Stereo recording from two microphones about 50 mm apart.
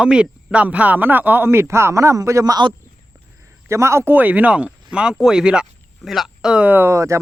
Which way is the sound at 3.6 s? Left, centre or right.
Right.